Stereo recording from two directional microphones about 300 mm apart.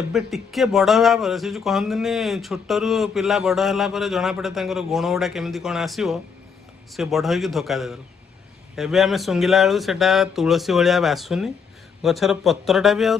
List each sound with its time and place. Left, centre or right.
0.1 s speech: centre